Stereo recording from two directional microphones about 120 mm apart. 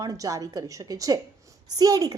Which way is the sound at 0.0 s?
30° right (ahead or behind).